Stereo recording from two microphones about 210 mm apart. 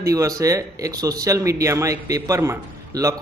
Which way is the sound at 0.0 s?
15° right (ahead or behind).